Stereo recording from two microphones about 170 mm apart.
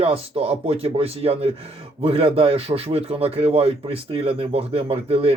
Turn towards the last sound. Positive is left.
turn(degrees=-35)  # may be behind; listen again after turning